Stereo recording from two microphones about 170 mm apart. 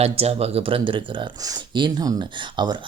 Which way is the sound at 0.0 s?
35° right (ahead or behind).